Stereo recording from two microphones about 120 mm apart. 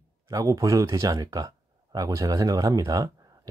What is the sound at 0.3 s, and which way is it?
Speech, 30° right (ahead or behind).